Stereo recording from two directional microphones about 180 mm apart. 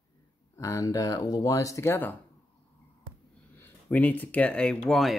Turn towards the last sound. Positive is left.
turn(degrees=0)  # may be behind; listen again after turning